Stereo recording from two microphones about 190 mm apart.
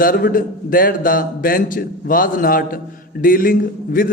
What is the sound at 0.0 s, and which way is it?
A man's voice, 50° left (ahead or behind).